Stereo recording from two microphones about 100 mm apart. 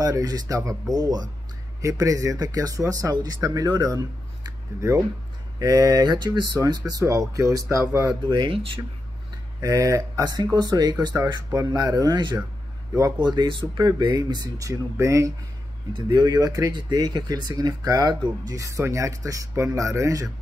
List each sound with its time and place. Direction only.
0.0 s speech: 40° right (ahead or behind)
6.9 s speech: 35° right (ahead or behind)
8.2 s speech: 50° right (ahead or behind)
9.6 s speech: 35° right (ahead or behind)
14.7 s speech: 30° right (ahead or behind)
15.9 s speech: 45° right (ahead or behind)